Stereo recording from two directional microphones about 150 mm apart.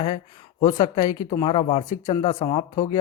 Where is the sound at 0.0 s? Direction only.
30° left (ahead or behind).